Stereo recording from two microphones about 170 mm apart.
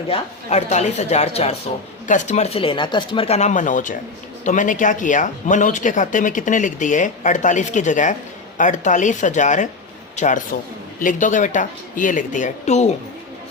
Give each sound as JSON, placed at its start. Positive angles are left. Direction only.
{"t": 0.1, "sound": "speech", "side_deg": 40}